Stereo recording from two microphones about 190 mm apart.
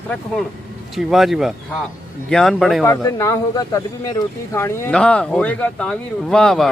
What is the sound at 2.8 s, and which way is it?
Speech, 15° left (ahead or behind).